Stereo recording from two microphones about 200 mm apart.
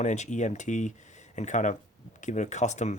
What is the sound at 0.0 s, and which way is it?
Speech, 35° left (ahead or behind).